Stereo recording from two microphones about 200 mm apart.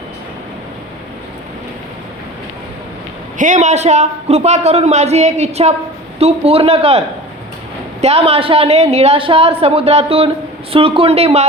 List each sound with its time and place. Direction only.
3.3 s a man's voice: 40° right (ahead or behind)
8.0 s a woman's voice: 30° right (ahead or behind)